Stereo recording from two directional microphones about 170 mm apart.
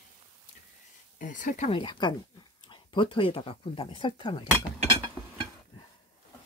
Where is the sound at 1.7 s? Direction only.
30° left (ahead or behind).